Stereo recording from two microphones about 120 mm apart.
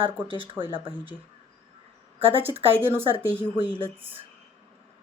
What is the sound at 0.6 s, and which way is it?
Speech, 45° right (ahead or behind).